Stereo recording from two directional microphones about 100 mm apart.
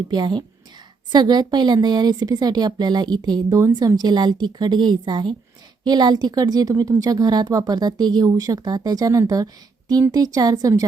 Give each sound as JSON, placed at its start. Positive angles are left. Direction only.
{"t": 0.1, "sound": "a woman's voice", "side_deg": -50}